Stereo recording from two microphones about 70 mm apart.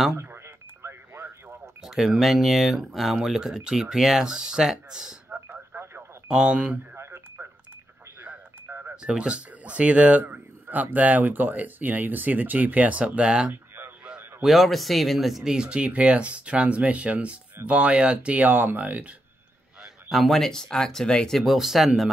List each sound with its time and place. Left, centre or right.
0.8 s radio: right
1.8 s speech: centre
5.3 s telephone: right
6.2 s speech: centre
7.0 s radio: right
8.2 s telephone dialing: right
8.9 s speech: centre
13.5 s radio: right
14.4 s speech: centre; by 19.1 s right
19.8 s speech: centre